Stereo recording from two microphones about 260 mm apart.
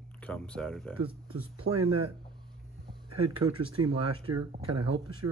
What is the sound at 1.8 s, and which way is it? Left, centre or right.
Speech, right.